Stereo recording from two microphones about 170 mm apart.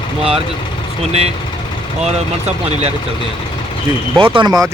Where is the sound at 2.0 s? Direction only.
40° right (ahead or behind).